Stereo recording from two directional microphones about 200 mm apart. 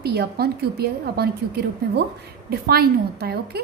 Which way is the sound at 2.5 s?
50° right (ahead or behind).